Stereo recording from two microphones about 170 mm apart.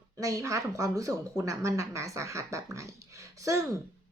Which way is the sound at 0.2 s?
20° right (ahead or behind).